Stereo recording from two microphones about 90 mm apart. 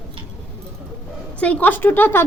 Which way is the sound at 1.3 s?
15° left (ahead or behind).